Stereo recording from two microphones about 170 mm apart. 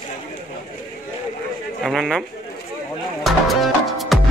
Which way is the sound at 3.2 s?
Centre (ahead or behind).